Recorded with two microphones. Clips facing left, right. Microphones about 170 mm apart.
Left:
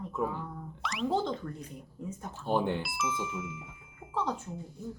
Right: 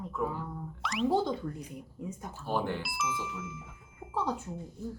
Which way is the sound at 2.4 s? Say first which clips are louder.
Left 3 dB; 20° left (ahead or behind).